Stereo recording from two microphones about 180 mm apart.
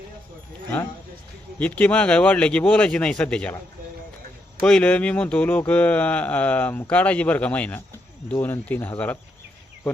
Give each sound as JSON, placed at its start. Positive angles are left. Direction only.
{"t": 1.5, "sound": "speech", "side_deg": 10}
{"t": 4.6, "sound": "speech", "side_deg": 5}